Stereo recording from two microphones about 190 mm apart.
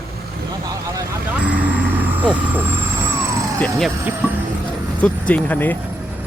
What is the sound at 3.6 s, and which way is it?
Speech, 5° left (ahead or behind).